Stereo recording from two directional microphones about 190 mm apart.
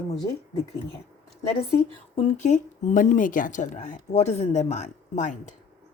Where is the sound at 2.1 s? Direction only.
35° left (ahead or behind).